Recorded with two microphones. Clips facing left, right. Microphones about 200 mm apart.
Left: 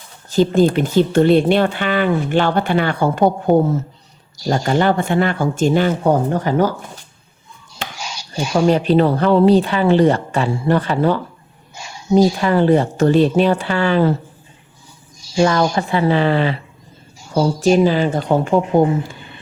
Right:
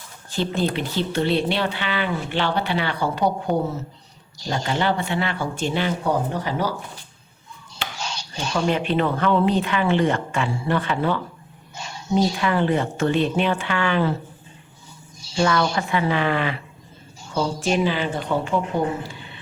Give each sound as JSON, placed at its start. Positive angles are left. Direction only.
{"t": 0.3, "sound": "speech", "side_deg": 40}
{"t": 7.9, "sound": "a sound", "side_deg": 10}
{"t": 8.5, "sound": "speech", "side_deg": 40}
{"t": 11.7, "sound": "a sound", "side_deg": 10}
{"t": 12.1, "sound": "speech", "side_deg": 40}
{"t": 15.7, "sound": "speech", "side_deg": 35}